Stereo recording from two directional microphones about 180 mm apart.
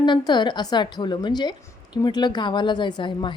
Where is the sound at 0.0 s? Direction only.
25° left (ahead or behind).